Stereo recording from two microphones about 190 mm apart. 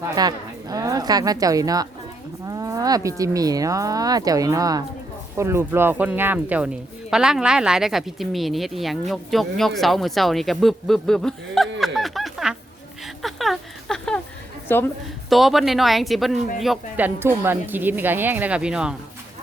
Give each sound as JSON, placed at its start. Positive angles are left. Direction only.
{"t": 0.0, "sound": "a woman's voice", "side_deg": -20}
{"t": 13.1, "sound": "a sound", "side_deg": 0}
{"t": 14.7, "sound": "a woman's voice", "side_deg": 10}
{"t": 15.3, "sound": "speech", "side_deg": 0}
{"t": 17.2, "sound": "speech", "side_deg": -10}